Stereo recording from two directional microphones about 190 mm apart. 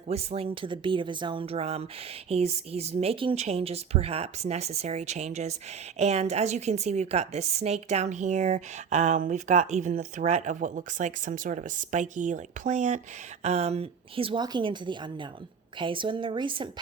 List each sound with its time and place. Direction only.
0.1 s a woman's voice: 35° right (ahead or behind)